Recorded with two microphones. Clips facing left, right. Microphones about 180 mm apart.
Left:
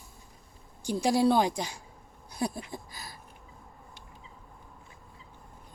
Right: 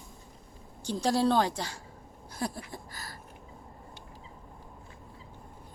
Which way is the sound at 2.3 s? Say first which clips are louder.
Left 3 dB; 15° left (ahead or behind).